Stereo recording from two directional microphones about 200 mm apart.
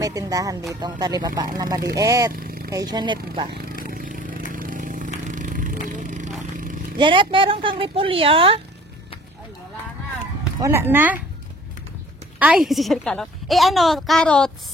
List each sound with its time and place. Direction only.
0.0 s a woman's voice: 15° right (ahead or behind)
2.3 s a sound: 45° right (ahead or behind)
2.7 s a woman's voice: 20° right (ahead or behind)
3.8 s vehicle: 45° right (ahead or behind)
4.5 s a sound: 45° right (ahead or behind)
7.0 s a woman's voice: 25° right (ahead or behind)
10.6 s speech: 10° right (ahead or behind)
12.4 s a woman's voice: 5° right (ahead or behind)